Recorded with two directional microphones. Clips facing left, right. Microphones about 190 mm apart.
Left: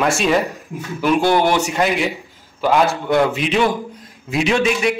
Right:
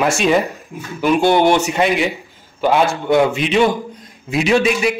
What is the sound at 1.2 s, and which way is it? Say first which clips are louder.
Speech: right 2 dB; 25° right (ahead or behind).